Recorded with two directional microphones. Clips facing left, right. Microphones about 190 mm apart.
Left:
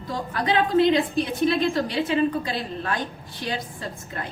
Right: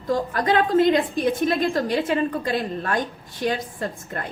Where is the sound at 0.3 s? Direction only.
45° right (ahead or behind).